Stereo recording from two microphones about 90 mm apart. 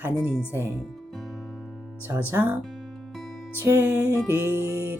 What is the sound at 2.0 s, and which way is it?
Speech, 20° right (ahead or behind).